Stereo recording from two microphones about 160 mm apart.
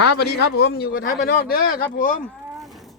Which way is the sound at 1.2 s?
65° left (ahead or behind).